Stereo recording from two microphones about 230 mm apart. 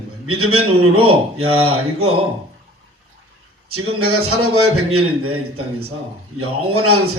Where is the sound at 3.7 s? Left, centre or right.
Right.